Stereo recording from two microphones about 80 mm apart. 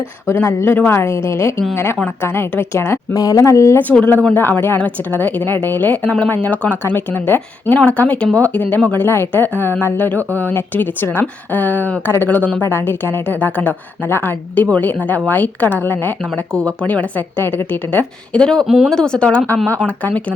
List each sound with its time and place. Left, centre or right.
0.3 s speech: left
3.2 s speech: left
4.4 s speech: left
18.3 s speech: centre
18.6 s speech: centre
18.9 s speech: centre